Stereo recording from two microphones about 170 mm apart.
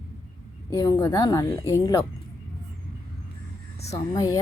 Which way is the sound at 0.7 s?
20° left (ahead or behind).